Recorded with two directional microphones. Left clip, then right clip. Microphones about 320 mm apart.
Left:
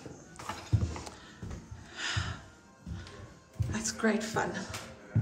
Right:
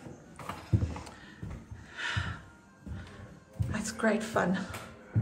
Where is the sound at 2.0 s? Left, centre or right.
Centre.